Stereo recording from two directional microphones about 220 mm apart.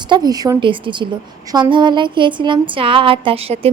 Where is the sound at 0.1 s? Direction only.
15° right (ahead or behind).